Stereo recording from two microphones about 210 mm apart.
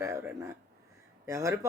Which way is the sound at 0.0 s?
10° right (ahead or behind).